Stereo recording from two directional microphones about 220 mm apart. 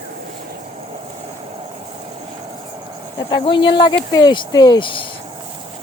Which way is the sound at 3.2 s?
20° left (ahead or behind).